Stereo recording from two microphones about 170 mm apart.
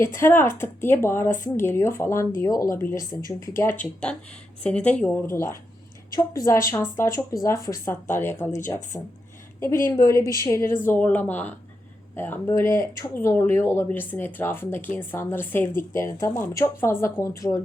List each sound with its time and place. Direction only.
0.0 s speech: 15° left (ahead or behind)
8.4 s speech: 45° left (ahead or behind)
9.6 s a woman's voice: 15° left (ahead or behind)